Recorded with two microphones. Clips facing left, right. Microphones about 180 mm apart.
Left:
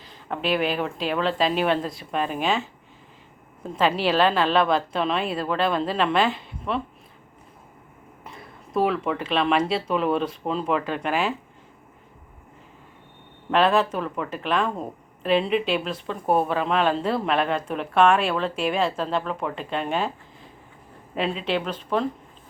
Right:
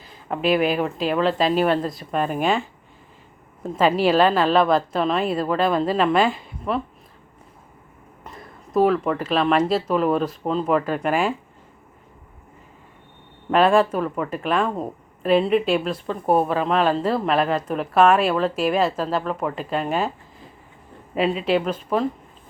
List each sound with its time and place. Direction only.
0.0 s speech: 5° right (ahead or behind)
3.6 s a woman's voice: 5° right (ahead or behind)
8.2 s a sound: centre (ahead or behind)
9.2 s speech: centre (ahead or behind)
13.5 s speech: 5° right (ahead or behind)
21.2 s speech: 5° right (ahead or behind)